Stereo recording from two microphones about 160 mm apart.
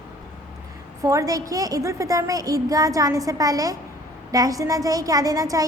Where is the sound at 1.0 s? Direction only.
20° right (ahead or behind).